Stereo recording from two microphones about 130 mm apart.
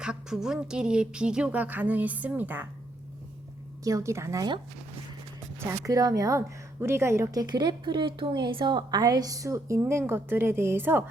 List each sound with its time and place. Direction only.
0.0 s speech: 5° right (ahead or behind)
3.8 s a woman's voice: 25° right (ahead or behind)
5.5 s a woman's voice: 25° right (ahead or behind)